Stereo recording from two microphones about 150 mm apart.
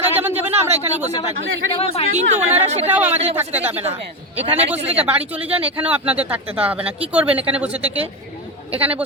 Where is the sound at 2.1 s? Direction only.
45° right (ahead or behind).